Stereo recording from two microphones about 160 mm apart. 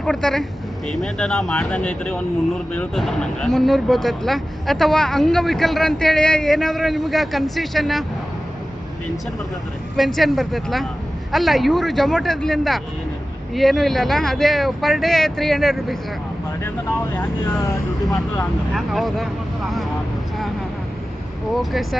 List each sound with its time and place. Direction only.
0.0 s speech: 5° left (ahead or behind)
10.0 s speech: centre (ahead or behind)
17.2 s speech: 20° left (ahead or behind)
18.7 s speech: centre (ahead or behind)
21.5 s speech: centre (ahead or behind)